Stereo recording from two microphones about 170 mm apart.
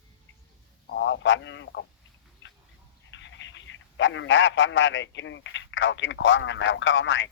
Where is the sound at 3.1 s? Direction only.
90° left.